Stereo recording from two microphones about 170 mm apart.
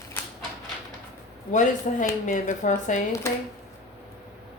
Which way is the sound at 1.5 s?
45° left (ahead or behind).